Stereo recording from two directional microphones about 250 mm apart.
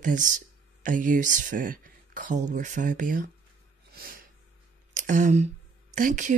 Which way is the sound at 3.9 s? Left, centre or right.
Right.